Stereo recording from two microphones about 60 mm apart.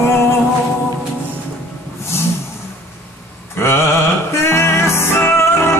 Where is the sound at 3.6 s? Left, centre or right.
Left.